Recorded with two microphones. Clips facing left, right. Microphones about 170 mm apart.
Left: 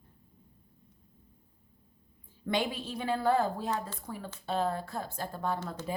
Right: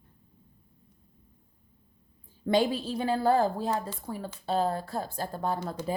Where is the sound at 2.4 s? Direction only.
35° right (ahead or behind).